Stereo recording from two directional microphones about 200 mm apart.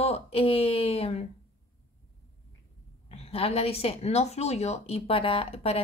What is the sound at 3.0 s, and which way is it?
A woman's voice, 30° left (ahead or behind).